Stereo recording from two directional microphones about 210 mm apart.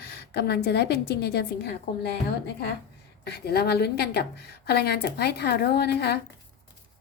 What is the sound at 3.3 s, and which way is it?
A woman's voice, 50° left (ahead or behind).